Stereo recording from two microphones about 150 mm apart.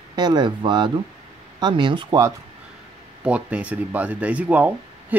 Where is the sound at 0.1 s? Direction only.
30° right (ahead or behind).